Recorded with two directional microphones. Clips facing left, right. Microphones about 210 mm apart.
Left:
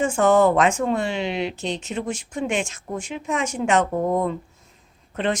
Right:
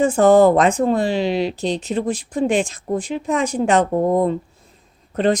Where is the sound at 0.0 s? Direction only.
35° right (ahead or behind).